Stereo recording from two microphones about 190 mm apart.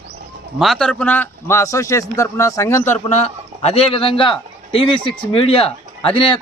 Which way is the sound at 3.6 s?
30° left (ahead or behind).